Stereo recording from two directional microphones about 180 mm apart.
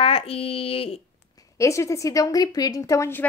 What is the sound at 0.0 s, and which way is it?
Speech, 30° left (ahead or behind).